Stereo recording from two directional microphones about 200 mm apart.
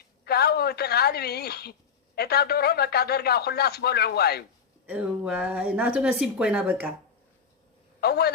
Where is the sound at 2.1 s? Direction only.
50° left (ahead or behind).